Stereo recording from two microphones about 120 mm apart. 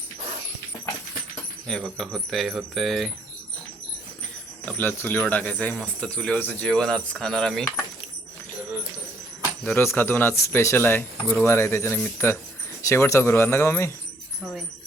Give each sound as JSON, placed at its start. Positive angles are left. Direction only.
{"t": 1.6, "sound": "keys jangling", "side_deg": 5}
{"t": 4.6, "sound": "speech", "side_deg": 15}
{"t": 6.7, "sound": "keys jangling", "side_deg": 5}
{"t": 9.7, "sound": "speech", "side_deg": 20}